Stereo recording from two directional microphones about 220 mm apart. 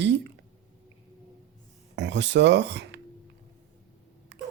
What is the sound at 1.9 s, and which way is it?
Speech, 55° right (ahead or behind).